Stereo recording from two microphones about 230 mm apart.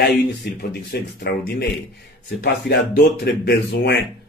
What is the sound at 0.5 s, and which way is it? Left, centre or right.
Speech, left.